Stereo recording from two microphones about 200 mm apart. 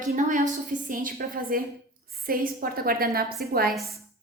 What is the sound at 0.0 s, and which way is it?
A woman's voice, 40° right (ahead or behind).